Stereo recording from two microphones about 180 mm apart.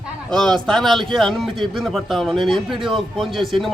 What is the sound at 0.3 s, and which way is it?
A man's voice, 5° left (ahead or behind).